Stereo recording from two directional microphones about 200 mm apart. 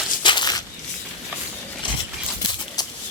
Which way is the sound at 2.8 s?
20° left (ahead or behind).